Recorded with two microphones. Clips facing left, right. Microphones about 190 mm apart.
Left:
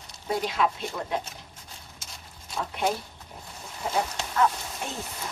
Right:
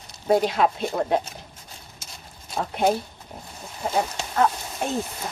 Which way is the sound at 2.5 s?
40° right (ahead or behind).